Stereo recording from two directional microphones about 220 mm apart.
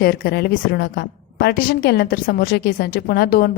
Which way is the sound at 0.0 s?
45° left (ahead or behind).